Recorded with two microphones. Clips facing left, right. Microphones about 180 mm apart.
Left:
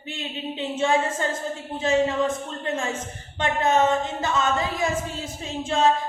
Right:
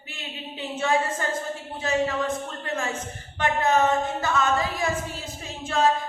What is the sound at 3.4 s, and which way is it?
A woman's voice, 25° left (ahead or behind).